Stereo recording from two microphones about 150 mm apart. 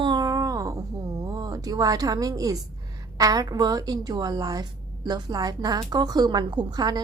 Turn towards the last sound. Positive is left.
turn(degrees=-30)  # may be behind; listen again after turning